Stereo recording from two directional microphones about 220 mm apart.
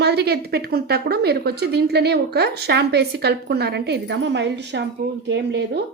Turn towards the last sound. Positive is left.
turn(degrees=-50)  # may be behind; listen again after turning